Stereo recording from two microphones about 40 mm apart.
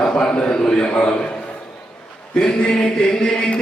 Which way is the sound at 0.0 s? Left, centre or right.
Left.